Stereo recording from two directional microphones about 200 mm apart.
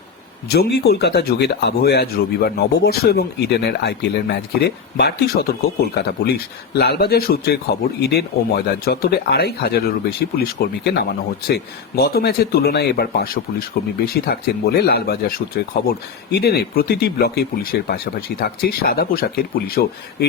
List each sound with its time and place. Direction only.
0.5 s speech: 50° left (ahead or behind)